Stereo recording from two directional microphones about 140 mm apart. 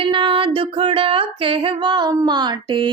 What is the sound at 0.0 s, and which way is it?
Music, 35° right (ahead or behind).